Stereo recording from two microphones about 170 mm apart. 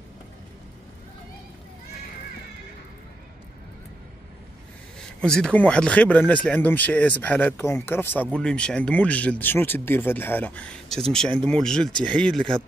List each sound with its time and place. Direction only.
5.2 s speech: 5° left (ahead or behind)